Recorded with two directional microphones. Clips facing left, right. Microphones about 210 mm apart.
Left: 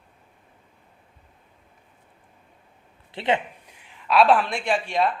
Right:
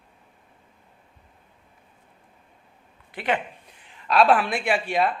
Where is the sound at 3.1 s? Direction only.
25° left (ahead or behind).